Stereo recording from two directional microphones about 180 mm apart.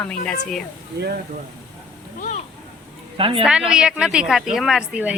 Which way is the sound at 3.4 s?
5° right (ahead or behind).